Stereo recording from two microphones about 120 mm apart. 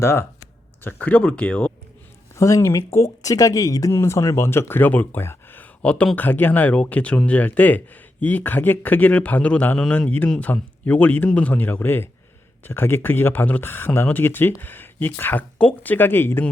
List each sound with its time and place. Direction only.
0.0 s speech: 20° left (ahead or behind)
2.3 s speech: 25° left (ahead or behind)